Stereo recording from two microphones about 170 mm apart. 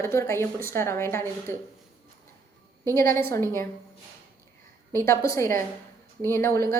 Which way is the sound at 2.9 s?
15° left (ahead or behind).